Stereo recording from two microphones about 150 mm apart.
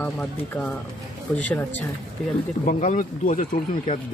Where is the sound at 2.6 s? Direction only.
60° left (ahead or behind).